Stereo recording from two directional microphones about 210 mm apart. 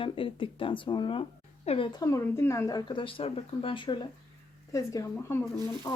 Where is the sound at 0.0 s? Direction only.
25° left (ahead or behind).